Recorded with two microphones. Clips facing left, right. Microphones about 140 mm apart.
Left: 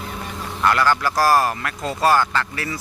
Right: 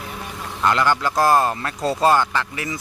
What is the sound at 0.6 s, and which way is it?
Speech, 20° right (ahead or behind).